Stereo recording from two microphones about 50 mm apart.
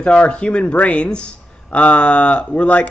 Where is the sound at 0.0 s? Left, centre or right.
Left.